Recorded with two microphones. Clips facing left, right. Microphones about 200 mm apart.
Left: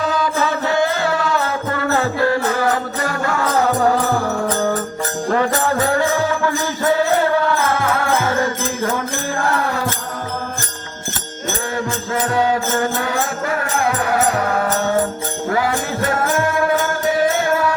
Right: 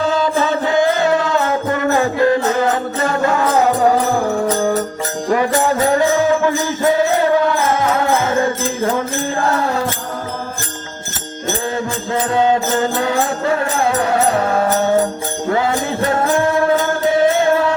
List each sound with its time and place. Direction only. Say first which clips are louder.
0.0 s music: right 3 dB; 25° right (ahead or behind)
5.3 s music: right 3 dB; 15° right (ahead or behind)
12.1 s music: right 3 dB; 25° right (ahead or behind)